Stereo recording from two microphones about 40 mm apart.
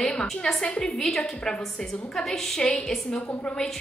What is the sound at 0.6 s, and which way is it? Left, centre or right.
Speech, left.